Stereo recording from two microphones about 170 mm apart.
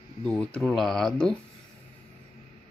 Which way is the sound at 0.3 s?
5° left (ahead or behind).